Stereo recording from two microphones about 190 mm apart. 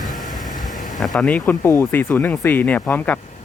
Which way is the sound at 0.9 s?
Centre (ahead or behind).